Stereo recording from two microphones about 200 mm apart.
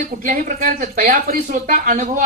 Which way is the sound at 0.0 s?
40° right (ahead or behind).